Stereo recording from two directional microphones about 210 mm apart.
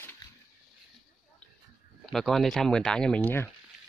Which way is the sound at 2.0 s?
Centre (ahead or behind).